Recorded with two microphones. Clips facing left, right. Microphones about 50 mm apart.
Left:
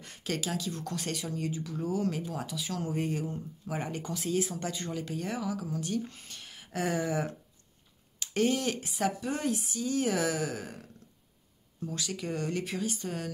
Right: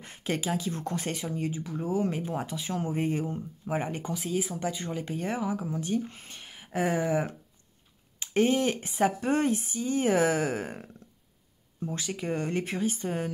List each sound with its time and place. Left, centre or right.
0.0 s speech: right
8.9 s a woman's voice: right